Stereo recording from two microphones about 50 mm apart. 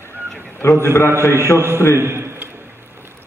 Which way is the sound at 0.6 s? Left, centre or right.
Left.